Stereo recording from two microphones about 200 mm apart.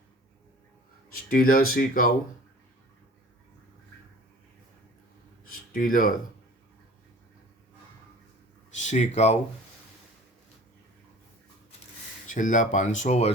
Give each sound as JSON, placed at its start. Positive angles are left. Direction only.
{"t": 1.1, "sound": "speech", "side_deg": 45}
{"t": 5.7, "sound": "speech", "side_deg": 45}
{"t": 8.8, "sound": "speech", "side_deg": 35}
{"t": 12.3, "sound": "speech", "side_deg": 40}